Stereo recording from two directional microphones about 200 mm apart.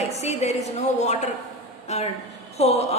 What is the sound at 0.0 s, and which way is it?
A woman's voice, 35° left (ahead or behind).